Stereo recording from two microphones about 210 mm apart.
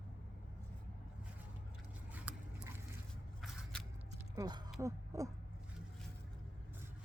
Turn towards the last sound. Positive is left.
turn(degrees=-15)  # may be behind; listen again after turning